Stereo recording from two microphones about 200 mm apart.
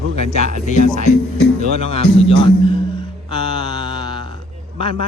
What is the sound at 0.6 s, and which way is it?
Speech, 35° left (ahead or behind).